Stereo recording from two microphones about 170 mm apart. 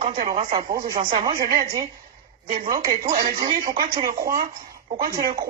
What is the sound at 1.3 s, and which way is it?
Speech, 60° right (ahead or behind).